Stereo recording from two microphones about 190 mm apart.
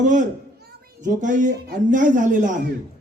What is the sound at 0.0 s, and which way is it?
A man's voice, 40° right (ahead or behind).